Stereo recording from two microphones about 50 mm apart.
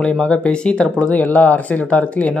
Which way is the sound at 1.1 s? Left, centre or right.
Left.